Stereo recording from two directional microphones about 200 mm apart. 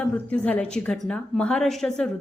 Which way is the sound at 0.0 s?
5° left (ahead or behind).